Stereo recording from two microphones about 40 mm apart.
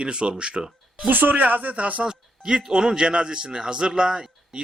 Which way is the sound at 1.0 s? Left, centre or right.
Right.